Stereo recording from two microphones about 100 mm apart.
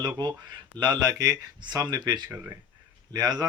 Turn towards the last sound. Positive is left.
turn(degrees=-40)  # may be behind; listen again after turning